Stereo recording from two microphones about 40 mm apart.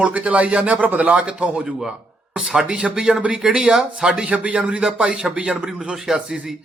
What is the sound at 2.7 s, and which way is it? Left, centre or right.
A man's voice, right.